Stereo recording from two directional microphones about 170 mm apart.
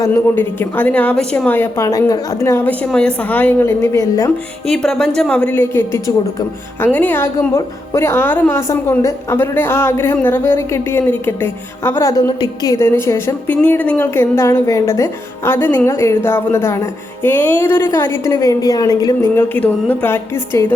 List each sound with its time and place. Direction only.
0.0 s a woman's voice: 15° left (ahead or behind)
4.7 s a woman's voice: 5° left (ahead or behind)